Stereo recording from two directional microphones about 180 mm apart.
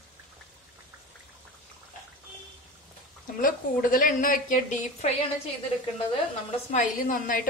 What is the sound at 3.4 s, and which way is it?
A woman's voice, 50° left (ahead or behind).